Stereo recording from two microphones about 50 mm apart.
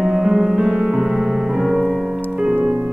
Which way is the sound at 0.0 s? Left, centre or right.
Centre.